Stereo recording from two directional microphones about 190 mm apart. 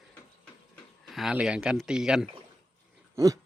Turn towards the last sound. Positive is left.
turn(degrees=-15)  # may be behind; listen again after turning